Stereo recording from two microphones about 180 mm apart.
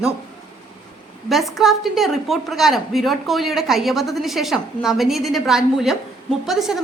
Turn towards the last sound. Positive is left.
turn(degrees=0)  # may be behind; listen again after turning